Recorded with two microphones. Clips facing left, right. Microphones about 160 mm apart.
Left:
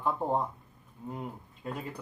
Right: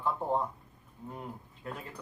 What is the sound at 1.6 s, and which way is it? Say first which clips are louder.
Speech: left 3 dB; 15° left (ahead or behind).